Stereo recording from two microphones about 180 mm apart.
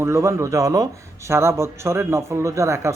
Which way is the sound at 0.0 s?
15° right (ahead or behind).